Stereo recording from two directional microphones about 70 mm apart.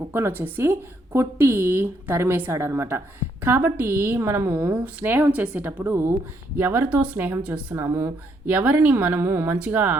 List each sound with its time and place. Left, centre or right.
0.1 s a woman's voice: right
7.8 s a woman's voice: right
8.4 s a woman's voice: right
9.6 s speech: right